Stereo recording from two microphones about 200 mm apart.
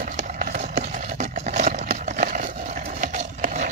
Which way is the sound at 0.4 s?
40° right (ahead or behind).